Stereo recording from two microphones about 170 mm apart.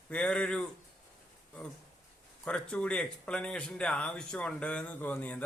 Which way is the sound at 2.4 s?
5° left (ahead or behind).